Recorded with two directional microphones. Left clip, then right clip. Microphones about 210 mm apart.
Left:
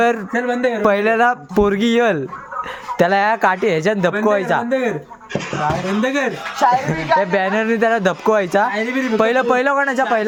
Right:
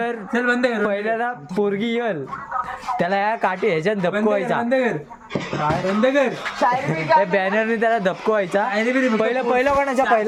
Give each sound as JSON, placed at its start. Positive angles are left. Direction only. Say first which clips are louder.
{"t": 0.3, "sound": "a man's voice", "louder": "left 1 dB", "side_deg": -20}
{"t": 0.8, "sound": "speech", "louder": "left 7 dB", "side_deg": 45}
{"t": 3.0, "sound": "a man's voice", "louder": "left 6 dB", "side_deg": 35}
{"t": 6.0, "sound": "speech", "louder": "right 1 dB", "side_deg": 40}
{"t": 6.7, "sound": "a man's voice", "louder": "left 3 dB", "side_deg": 20}
{"t": 8.7, "sound": "speech", "louder": "right 1 dB", "side_deg": 0}
{"t": 9.2, "sound": "speech", "louder": "left 5 dB", "side_deg": 40}
{"t": 9.6, "sound": "a man's voice", "louder": "left 2 dB", "side_deg": 20}